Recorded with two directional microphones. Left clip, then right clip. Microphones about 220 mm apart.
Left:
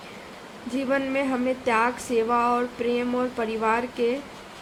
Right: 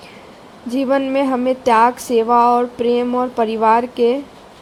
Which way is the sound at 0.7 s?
30° right (ahead or behind).